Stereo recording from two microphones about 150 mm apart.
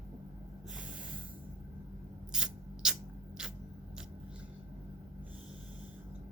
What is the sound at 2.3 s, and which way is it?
Rub, 5° right (ahead or behind).